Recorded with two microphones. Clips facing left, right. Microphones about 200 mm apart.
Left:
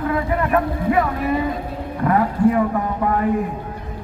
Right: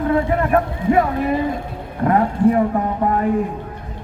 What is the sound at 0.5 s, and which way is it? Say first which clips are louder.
Speech: right 2 dB; 30° right (ahead or behind).